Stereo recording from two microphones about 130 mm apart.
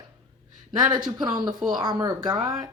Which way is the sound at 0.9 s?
35° right (ahead or behind).